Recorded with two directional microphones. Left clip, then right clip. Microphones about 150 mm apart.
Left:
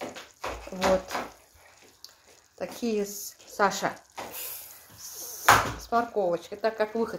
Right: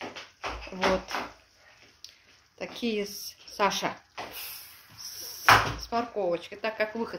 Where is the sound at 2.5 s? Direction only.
10° left (ahead or behind).